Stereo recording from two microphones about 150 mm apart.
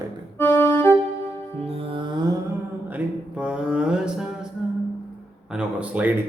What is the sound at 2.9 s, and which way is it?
Mantra, 10° right (ahead or behind).